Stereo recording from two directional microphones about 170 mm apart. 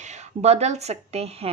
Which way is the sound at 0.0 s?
40° right (ahead or behind).